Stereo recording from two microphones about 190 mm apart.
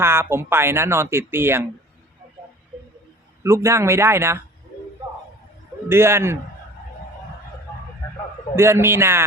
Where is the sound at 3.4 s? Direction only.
15° right (ahead or behind).